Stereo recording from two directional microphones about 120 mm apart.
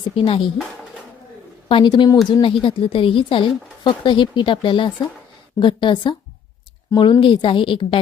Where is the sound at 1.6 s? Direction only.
45° left (ahead or behind).